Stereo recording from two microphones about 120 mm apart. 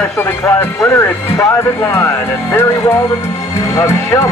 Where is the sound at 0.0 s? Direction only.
20° left (ahead or behind).